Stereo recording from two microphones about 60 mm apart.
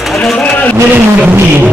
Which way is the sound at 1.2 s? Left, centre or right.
Right.